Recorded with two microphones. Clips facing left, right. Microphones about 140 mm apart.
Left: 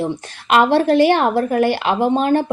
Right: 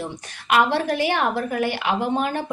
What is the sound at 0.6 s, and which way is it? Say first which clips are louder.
A woman's voice: left 8 dB; 60° left (ahead or behind).